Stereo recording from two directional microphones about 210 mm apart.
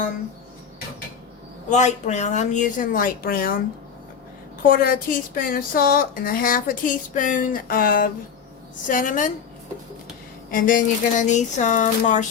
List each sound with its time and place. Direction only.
1.7 s speech: 35° left (ahead or behind)
4.6 s a woman's voice: 45° left (ahead or behind)
10.5 s speech: 40° left (ahead or behind)